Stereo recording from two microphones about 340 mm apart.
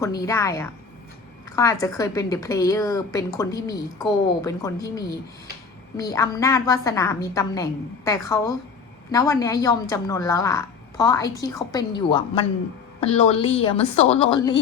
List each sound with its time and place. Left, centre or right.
0.0 s speech: centre